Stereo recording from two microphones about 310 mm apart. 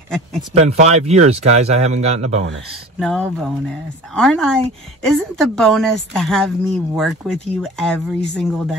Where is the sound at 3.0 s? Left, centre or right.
Centre.